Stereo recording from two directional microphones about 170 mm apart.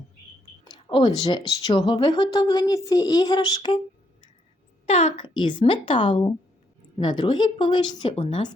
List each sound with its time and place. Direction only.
0.6 s a sound: 25° left (ahead or behind)
1.2 s a woman's voice: 25° left (ahead or behind)
4.9 s a woman's voice: 40° left (ahead or behind)